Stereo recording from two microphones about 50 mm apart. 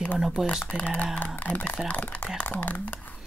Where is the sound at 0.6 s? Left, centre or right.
Left.